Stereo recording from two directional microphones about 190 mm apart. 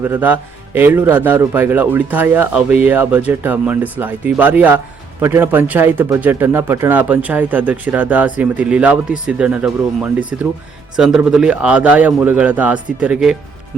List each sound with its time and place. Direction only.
0.0 s speech: 10° right (ahead or behind)